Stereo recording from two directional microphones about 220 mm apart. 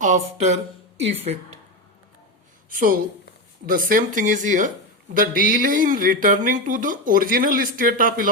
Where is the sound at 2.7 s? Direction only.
40° right (ahead or behind).